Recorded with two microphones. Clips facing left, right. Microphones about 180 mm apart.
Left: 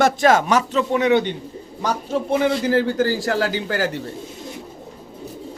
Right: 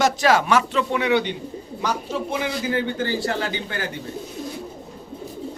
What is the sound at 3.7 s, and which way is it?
Speech, 85° left.